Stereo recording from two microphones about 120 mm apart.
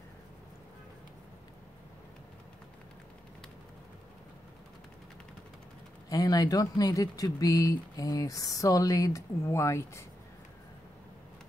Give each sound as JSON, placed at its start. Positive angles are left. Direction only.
{"t": 6.0, "sound": "speech", "side_deg": 30}